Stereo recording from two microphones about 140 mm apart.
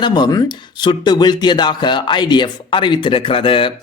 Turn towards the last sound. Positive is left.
turn(degrees=40)  # may be behind; listen again after turning